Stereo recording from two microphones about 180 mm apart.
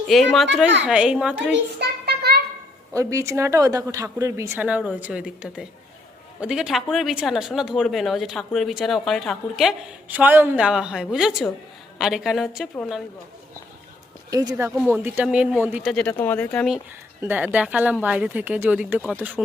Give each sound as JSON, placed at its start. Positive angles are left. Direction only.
{"t": 0.1, "sound": "speech", "side_deg": 0}
{"t": 1.8, "sound": "child singing", "side_deg": -60}
{"t": 2.9, "sound": "a woman's voice", "side_deg": -15}
{"t": 14.3, "sound": "speech", "side_deg": -20}
{"t": 17.2, "sound": "a woman's voice", "side_deg": -10}